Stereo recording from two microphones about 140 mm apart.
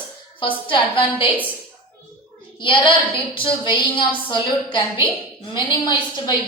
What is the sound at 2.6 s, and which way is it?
A woman's voice, 35° left (ahead or behind).